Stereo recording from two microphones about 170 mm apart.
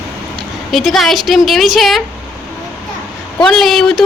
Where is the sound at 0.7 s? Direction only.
Centre (ahead or behind).